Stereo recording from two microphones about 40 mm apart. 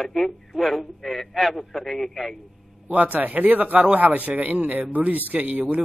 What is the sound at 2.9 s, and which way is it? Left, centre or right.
A man's voice, right.